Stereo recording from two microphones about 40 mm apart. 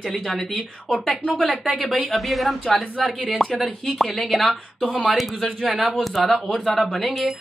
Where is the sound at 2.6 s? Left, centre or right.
Centre.